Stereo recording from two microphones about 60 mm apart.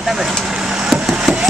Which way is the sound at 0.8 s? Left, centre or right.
Centre.